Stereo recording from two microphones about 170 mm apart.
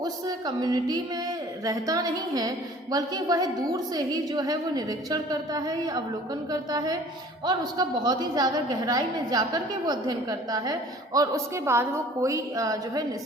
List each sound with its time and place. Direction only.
0.0 s a woman's voice: 20° right (ahead or behind)